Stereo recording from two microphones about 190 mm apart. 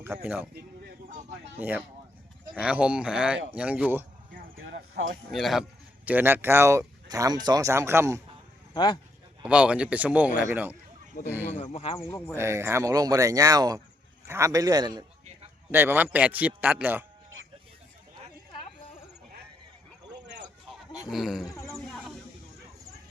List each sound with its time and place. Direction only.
0.0 s speech: 10° right (ahead or behind)
0.5 s a sound: 55° right (ahead or behind)
1.5 s speech: 10° right (ahead or behind)
4.6 s a sound: 80° right
5.3 s speech: centre (ahead or behind)
8.7 s speech: 20° left (ahead or behind)
9.4 s speech: 5° right (ahead or behind)
11.5 s speech: 30° left (ahead or behind)
12.1 s speech: 10° left (ahead or behind)
12.4 s a man's voice: 15° right (ahead or behind)
21.1 s speech: centre (ahead or behind)
21.4 s speech: 15° left (ahead or behind)
21.8 s snake: centre (ahead or behind)